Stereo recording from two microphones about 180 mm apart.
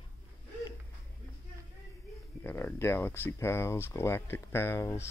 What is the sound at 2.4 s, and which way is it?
Speech, 15° left (ahead or behind).